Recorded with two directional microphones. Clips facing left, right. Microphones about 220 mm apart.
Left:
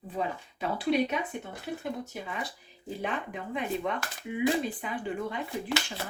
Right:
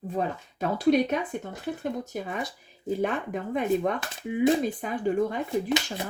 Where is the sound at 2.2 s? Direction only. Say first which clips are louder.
Right 5 dB; 45° right (ahead or behind).